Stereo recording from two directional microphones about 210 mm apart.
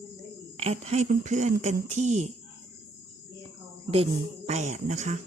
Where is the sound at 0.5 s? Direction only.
30° right (ahead or behind).